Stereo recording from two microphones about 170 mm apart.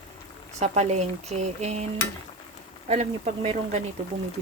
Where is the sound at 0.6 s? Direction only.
40° right (ahead or behind).